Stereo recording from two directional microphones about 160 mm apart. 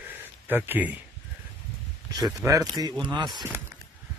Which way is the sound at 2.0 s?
25° right (ahead or behind).